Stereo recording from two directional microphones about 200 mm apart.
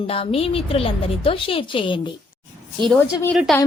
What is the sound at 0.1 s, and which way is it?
A woman's voice, 30° left (ahead or behind).